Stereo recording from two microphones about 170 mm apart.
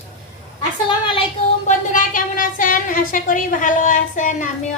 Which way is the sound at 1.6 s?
50° left (ahead or behind).